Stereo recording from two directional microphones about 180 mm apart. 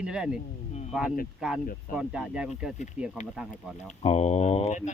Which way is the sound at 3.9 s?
35° left (ahead or behind).